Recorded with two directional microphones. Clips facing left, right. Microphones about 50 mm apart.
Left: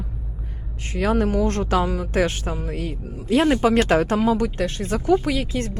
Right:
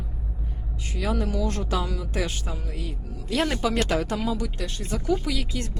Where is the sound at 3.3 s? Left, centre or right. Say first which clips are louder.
Left 7 dB; centre.